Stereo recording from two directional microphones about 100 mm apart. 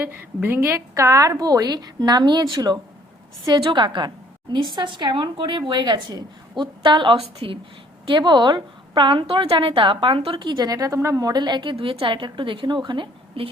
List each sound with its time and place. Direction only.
0.4 s a woman's voice: 20° right (ahead or behind); by 13.5 s 60° right (ahead or behind)